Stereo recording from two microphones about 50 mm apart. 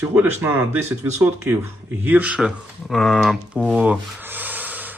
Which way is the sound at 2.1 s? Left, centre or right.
Right.